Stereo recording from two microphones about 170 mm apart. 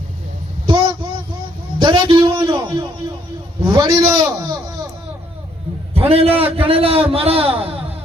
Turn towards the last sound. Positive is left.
turn(degrees=-35)  # may be behind; listen again after turning